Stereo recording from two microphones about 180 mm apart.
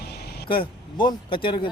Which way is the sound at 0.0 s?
65° left (ahead or behind).